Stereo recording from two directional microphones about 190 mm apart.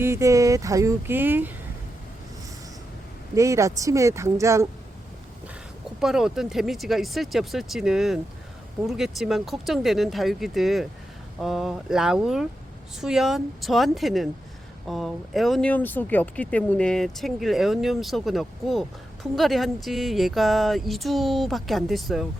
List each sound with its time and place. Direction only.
0.0 s speech: 15° right (ahead or behind)
3.3 s speech: 15° right (ahead or behind)
6.0 s speech: 5° right (ahead or behind)